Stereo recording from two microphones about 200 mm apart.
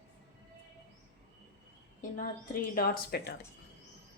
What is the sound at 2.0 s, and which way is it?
A woman's voice, 40° left (ahead or behind).